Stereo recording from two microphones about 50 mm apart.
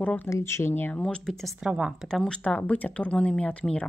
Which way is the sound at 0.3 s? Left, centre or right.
Left.